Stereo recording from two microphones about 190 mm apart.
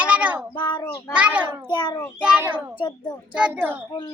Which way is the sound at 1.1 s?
5° right (ahead or behind).